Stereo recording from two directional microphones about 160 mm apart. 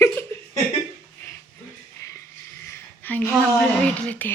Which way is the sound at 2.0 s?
20° left (ahead or behind).